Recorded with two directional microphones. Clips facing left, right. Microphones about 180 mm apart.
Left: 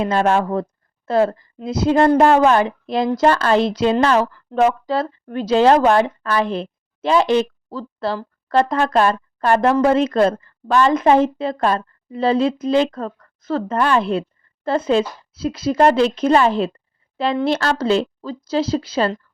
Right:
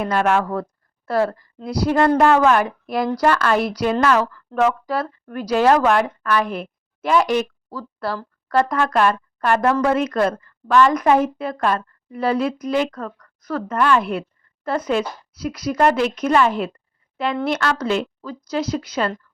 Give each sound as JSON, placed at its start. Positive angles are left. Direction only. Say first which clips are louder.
{"t": 0.0, "sound": "a woman's voice", "louder": "left 2 dB", "side_deg": 25}